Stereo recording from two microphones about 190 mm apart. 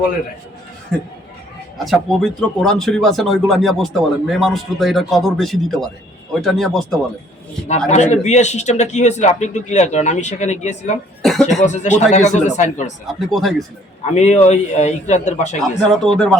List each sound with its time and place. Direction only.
1.8 s speech: centre (ahead or behind)
7.9 s a man's voice: 35° left (ahead or behind)
11.2 s cough: centre (ahead or behind)
11.6 s a man's voice: 40° left (ahead or behind)
13.1 s speech: centre (ahead or behind)
14.1 s a man's voice: 35° left (ahead or behind)
15.8 s speech: centre (ahead or behind)